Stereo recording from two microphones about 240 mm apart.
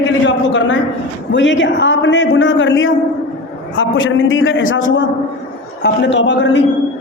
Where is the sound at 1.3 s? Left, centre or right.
Left.